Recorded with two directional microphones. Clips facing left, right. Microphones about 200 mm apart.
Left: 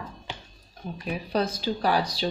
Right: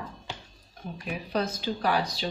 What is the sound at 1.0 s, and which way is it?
Speech, 35° left (ahead or behind).